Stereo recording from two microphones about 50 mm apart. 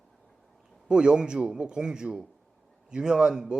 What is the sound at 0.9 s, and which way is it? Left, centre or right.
A man's voice, centre.